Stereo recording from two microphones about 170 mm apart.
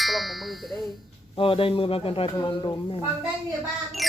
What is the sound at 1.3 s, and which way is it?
Speech, 30° left (ahead or behind).